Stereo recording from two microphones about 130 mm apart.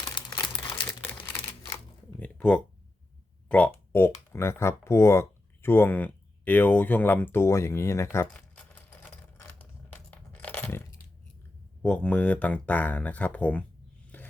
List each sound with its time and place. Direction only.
0.1 s crumpling: 35° left (ahead or behind)
2.1 s a sound: 10° left (ahead or behind)
3.5 s speech: 15° left (ahead or behind)
8.3 s typewriter: 10° left (ahead or behind)
10.1 s coin: 10° left (ahead or behind)
11.8 s speech: 10° left (ahead or behind)
14.1 s a sound: 15° left (ahead or behind)